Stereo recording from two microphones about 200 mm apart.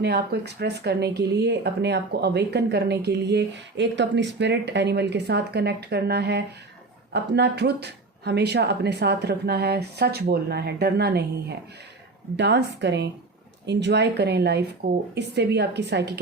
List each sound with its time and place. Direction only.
0.0 s speech: 55° right (ahead or behind)